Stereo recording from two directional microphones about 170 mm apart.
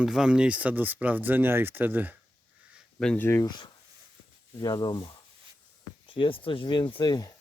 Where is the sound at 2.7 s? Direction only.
5° left (ahead or behind).